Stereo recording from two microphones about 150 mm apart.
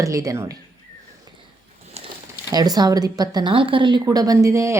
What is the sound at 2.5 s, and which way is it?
A woman's voice, 25° right (ahead or behind).